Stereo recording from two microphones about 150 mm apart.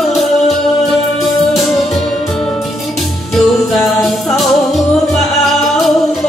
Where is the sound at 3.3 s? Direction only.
Centre (ahead or behind).